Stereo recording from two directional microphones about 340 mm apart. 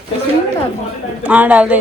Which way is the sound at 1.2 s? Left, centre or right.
Centre.